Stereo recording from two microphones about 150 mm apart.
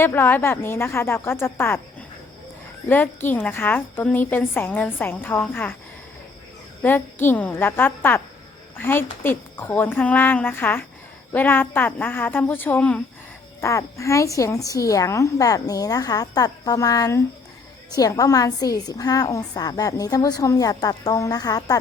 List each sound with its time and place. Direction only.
0.0 s a woman's voice: 15° left (ahead or behind)
6.8 s a woman's voice: 15° left (ahead or behind)